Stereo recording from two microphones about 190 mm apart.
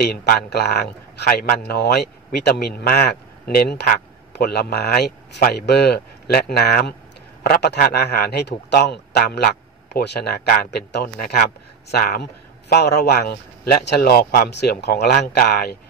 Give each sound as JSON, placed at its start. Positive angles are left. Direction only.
{"t": 0.0, "sound": "a man's voice", "side_deg": 55}